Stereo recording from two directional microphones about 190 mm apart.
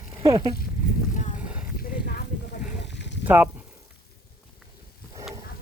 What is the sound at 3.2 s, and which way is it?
Speech, 10° right (ahead or behind).